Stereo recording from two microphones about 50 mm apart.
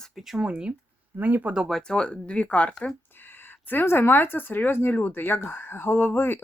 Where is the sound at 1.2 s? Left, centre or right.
Right.